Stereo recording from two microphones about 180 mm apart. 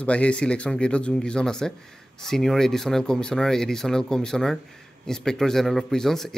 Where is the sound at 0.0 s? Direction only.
5° left (ahead or behind).